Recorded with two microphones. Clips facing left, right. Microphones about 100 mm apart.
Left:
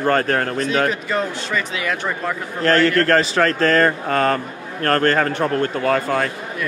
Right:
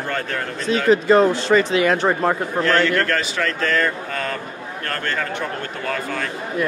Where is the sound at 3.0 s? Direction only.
40° left (ahead or behind).